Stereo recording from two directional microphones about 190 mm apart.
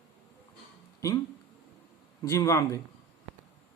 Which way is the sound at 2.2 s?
15° left (ahead or behind).